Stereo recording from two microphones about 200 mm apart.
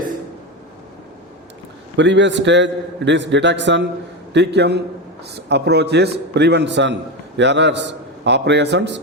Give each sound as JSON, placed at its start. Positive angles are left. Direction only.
{"t": 2.0, "sound": "a man's voice", "side_deg": -65}